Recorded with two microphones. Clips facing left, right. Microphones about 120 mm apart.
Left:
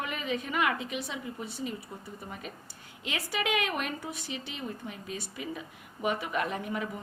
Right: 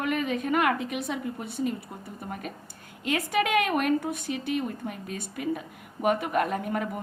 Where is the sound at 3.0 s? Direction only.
45° right (ahead or behind).